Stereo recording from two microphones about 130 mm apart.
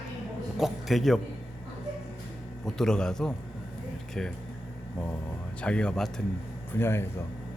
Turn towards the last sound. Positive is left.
turn(degrees=20)  # may be behind; listen again after turning